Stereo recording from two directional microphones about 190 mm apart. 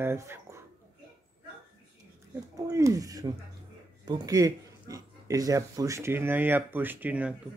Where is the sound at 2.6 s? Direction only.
15° right (ahead or behind).